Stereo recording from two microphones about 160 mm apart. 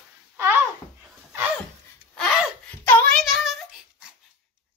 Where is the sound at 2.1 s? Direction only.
Centre (ahead or behind).